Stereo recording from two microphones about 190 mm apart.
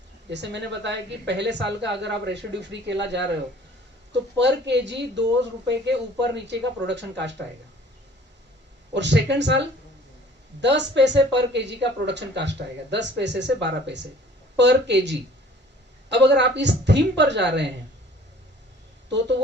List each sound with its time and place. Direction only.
0.3 s speech: 65° right (ahead or behind)
8.9 s speech: 65° right (ahead or behind)